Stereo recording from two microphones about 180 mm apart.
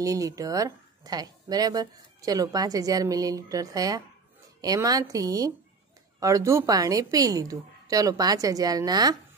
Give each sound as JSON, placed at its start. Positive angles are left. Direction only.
{"t": 0.0, "sound": "speech", "side_deg": -20}